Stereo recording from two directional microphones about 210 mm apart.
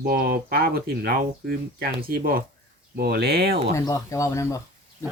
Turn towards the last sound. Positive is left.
turn(degrees=15)  # may be behind; listen again after turning